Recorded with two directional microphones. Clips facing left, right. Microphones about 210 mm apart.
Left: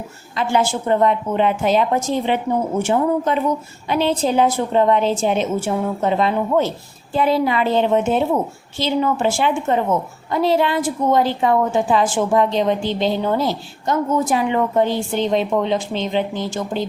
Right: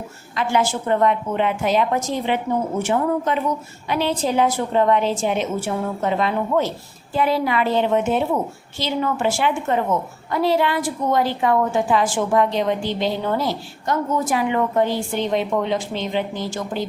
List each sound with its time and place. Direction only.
0.3 s a woman's voice: 30° left (ahead or behind)